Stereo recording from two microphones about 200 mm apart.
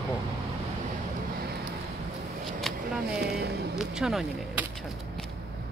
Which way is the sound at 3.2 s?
55° right (ahead or behind).